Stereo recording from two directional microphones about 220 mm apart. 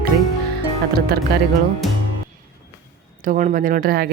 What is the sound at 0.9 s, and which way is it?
Speech, 45° right (ahead or behind).